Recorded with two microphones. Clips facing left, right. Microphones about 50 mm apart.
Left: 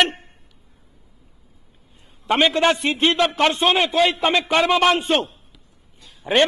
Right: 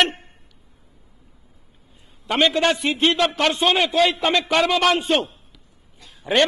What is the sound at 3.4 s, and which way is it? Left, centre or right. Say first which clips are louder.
Music: left 2 dB; left.